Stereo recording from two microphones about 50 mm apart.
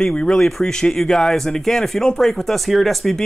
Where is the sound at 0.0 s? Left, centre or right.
Centre.